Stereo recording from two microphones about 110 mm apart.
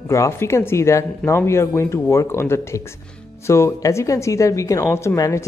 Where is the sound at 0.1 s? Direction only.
25° left (ahead or behind).